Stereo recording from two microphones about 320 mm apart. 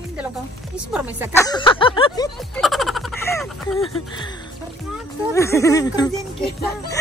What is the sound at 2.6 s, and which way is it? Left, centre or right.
Speech, centre.